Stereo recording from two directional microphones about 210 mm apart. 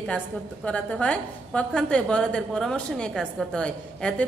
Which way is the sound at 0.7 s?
5° left (ahead or behind).